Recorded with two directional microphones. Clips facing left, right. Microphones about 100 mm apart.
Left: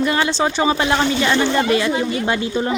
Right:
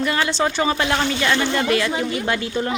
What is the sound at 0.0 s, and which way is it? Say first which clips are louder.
Speech: left 2 dB; 25° left (ahead or behind).